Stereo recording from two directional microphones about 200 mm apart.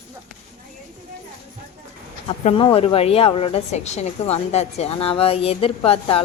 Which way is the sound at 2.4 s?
25° left (ahead or behind).